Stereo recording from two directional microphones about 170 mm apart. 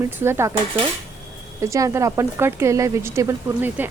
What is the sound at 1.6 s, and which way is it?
Speech, 20° right (ahead or behind).